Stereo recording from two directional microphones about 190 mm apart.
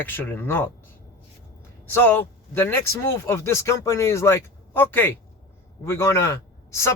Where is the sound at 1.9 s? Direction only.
10° left (ahead or behind).